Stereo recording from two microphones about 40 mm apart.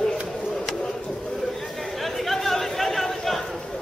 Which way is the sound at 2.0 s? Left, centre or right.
Centre.